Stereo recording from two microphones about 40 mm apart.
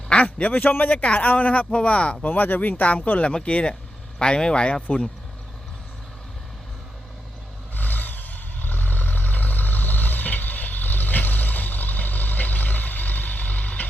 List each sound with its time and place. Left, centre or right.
0.3 s a man's voice: left
2.2 s speech: left
7.8 s vehicle: left